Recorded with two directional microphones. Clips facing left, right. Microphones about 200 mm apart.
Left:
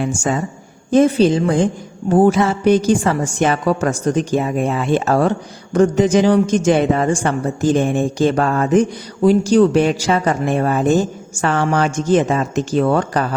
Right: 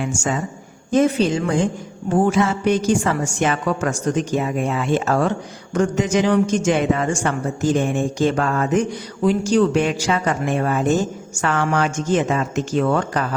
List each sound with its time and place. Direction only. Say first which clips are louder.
0.0 s a woman's voice: left 4 dB; 35° left (ahead or behind)